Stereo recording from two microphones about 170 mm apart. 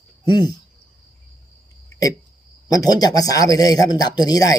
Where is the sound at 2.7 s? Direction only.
20° left (ahead or behind).